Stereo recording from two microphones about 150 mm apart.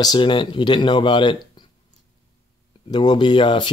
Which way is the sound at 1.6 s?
30° left (ahead or behind).